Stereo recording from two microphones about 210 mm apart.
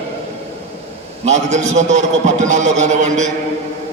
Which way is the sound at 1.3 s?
35° right (ahead or behind).